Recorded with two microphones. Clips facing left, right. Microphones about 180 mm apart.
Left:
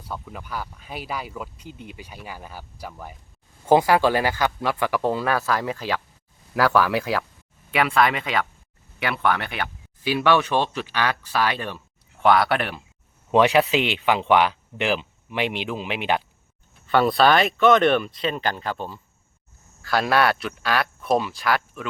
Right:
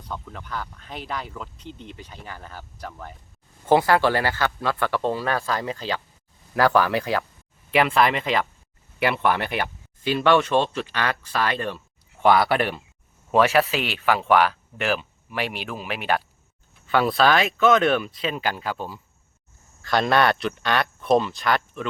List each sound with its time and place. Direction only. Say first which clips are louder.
0.0 s speech: left 1 dB; 10° left (ahead or behind)
10.0 s speech: right 1 dB; 10° left (ahead or behind)
12.2 s speech: right 1 dB; centre (ahead or behind)
13.3 s speech: left 2 dB; 20° left (ahead or behind)
16.9 s speech: left 2 dB; centre (ahead or behind)
19.8 s speech: right 1 dB; 5° left (ahead or behind)